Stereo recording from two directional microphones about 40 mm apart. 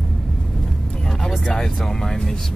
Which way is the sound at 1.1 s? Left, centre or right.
Centre.